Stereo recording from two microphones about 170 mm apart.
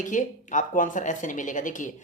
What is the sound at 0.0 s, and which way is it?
Speech, 50° left (ahead or behind).